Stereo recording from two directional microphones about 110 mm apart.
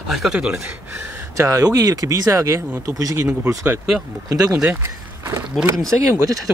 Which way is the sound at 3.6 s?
5° right (ahead or behind).